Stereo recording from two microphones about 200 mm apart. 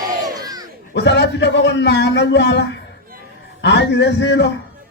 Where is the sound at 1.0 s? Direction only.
60° left (ahead or behind).